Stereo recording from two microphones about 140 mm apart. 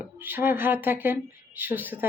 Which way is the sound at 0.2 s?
15° right (ahead or behind).